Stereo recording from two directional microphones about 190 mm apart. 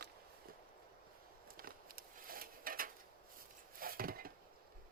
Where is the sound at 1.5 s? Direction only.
50° right (ahead or behind).